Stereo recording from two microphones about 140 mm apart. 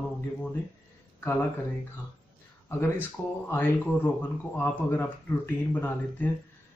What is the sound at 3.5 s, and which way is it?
Speech, 15° left (ahead or behind).